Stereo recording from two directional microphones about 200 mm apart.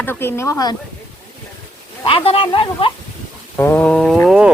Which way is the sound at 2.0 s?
25° left (ahead or behind).